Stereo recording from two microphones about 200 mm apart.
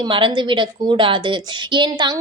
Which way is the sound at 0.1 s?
25° right (ahead or behind).